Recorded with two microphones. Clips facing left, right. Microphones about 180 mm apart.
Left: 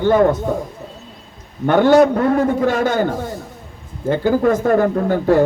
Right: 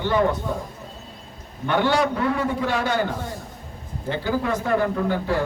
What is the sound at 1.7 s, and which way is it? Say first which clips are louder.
A man's voice: left 9 dB; 45° left (ahead or behind).